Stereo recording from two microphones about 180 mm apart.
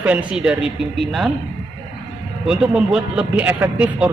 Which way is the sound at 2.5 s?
5° right (ahead or behind).